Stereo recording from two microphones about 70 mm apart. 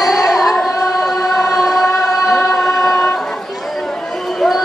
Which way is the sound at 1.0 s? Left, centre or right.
Centre.